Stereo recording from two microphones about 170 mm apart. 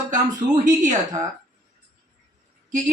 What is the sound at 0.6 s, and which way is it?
Speech, 45° right (ahead or behind).